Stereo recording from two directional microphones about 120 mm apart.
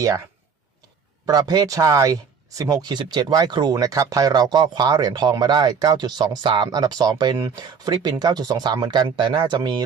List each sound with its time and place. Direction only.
1.3 s speech: 35° right (ahead or behind)